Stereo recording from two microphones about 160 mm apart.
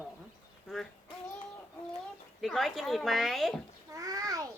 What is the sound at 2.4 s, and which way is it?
Speech, centre (ahead or behind).